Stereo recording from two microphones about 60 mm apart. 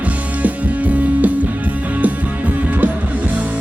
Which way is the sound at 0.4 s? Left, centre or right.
Right.